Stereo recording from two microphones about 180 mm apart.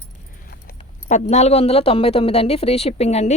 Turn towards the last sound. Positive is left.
turn(degrees=35)  # may be behind; listen again after turning